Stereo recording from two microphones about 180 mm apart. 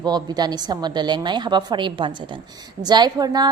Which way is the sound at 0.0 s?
20° right (ahead or behind).